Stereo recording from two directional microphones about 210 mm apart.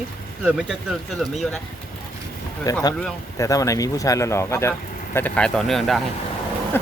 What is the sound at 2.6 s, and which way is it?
Speech, 15° left (ahead or behind).